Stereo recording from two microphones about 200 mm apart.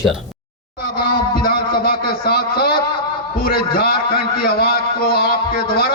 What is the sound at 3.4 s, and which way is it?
A man's voice, 50° left (ahead or behind).